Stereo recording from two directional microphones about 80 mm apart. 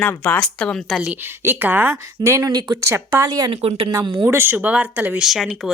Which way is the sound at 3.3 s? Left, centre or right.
Right.